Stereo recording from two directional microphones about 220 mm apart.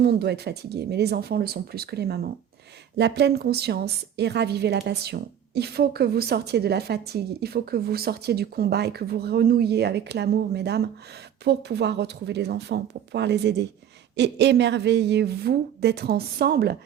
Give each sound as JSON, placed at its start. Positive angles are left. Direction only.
{"t": 0.0, "sound": "a woman's voice", "side_deg": -45}